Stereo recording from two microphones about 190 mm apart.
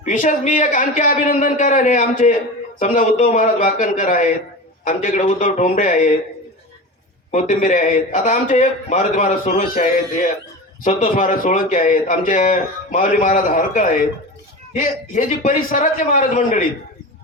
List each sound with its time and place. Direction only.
0.0 s a man's voice: 45° left (ahead or behind)
7.3 s a man's voice: 40° left (ahead or behind)